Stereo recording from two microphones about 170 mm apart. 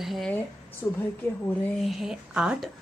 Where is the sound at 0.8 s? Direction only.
15° left (ahead or behind).